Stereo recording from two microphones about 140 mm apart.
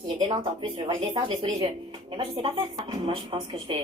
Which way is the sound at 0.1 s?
35° right (ahead or behind).